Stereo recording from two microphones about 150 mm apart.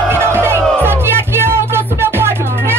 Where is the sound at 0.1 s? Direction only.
15° right (ahead or behind).